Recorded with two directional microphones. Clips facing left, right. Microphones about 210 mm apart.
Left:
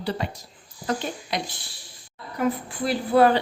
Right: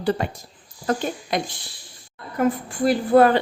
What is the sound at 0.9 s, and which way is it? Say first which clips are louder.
Speech: right 4 dB; 50° right (ahead or behind).